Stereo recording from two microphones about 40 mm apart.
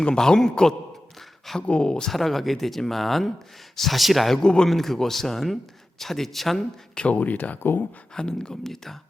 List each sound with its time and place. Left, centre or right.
0.0 s speech: centre
1.5 s speech: centre
1.8 s speech: left
2.0 s speech: centre
4.4 s speech: centre
4.7 s speech: centre
7.1 s speech: left
7.6 s speech: left
8.1 s speech: centre
8.6 s speech: centre